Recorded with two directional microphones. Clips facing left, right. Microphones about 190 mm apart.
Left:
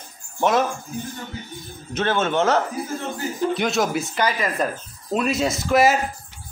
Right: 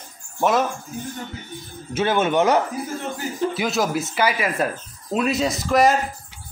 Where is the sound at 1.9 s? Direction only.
10° right (ahead or behind).